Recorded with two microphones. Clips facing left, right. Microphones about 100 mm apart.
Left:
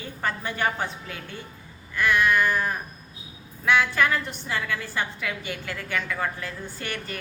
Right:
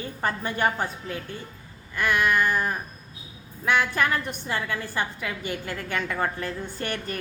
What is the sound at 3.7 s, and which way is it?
Speech, 45° right (ahead or behind).